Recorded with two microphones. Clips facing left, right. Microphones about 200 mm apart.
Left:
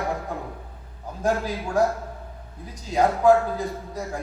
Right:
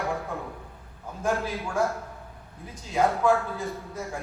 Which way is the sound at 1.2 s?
40° left (ahead or behind).